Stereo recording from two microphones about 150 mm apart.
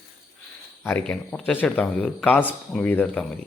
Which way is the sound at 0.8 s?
10° left (ahead or behind).